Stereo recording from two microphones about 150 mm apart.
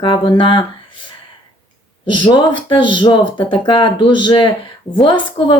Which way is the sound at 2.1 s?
30° left (ahead or behind).